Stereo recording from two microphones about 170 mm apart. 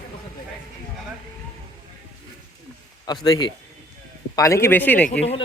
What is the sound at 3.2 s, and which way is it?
A man's voice, 20° left (ahead or behind).